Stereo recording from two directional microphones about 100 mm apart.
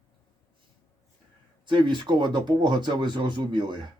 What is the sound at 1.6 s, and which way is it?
Speech, 50° right (ahead or behind).